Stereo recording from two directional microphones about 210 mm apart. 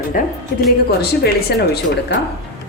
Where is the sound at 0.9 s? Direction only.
50° left (ahead or behind).